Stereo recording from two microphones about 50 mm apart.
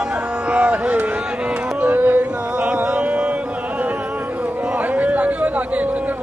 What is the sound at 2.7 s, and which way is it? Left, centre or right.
Mantra, right.